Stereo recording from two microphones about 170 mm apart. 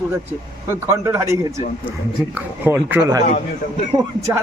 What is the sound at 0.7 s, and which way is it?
Speech, 15° right (ahead or behind).